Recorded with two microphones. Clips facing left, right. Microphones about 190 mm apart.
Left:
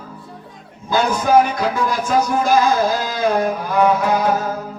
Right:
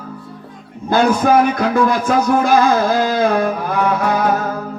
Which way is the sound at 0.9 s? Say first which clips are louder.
Right 2 dB; 55° right (ahead or behind).